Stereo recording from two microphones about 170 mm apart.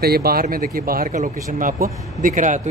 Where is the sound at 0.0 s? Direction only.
65° right (ahead or behind).